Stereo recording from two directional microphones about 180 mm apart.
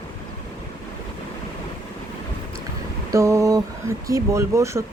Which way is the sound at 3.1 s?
15° right (ahead or behind).